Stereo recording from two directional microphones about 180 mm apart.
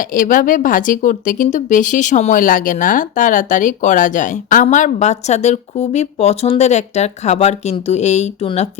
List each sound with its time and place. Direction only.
0.1 s a woman's voice: 50° left (ahead or behind)